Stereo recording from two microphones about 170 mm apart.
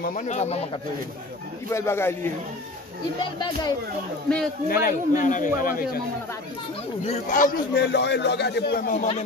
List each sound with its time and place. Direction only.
0.0 s speech: 50° left (ahead or behind)
1.7 s speech: 15° left (ahead or behind)
4.6 s a man's voice: 55° left (ahead or behind)
7.1 s a man's voice: 50° left (ahead or behind)